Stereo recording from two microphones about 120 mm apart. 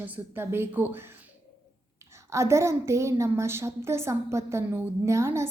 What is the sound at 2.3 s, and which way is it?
Speech, 25° right (ahead or behind).